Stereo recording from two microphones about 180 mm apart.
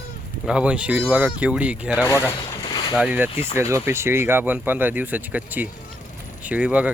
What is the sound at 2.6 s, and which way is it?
Boat, 25° left (ahead or behind).